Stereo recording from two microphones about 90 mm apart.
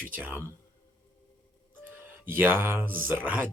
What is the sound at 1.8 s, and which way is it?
Speech, 20° right (ahead or behind).